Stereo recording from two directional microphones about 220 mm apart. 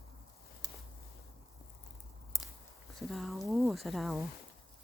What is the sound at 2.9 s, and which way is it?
Speech, centre (ahead or behind).